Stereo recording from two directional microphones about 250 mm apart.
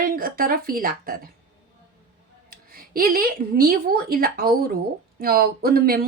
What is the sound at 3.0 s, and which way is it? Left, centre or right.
Speech, right.